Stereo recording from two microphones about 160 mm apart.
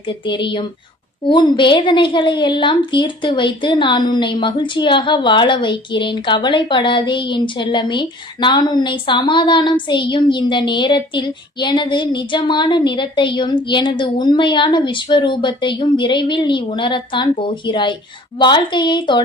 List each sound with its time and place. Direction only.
0.3 s a woman's voice: 30° left (ahead or behind)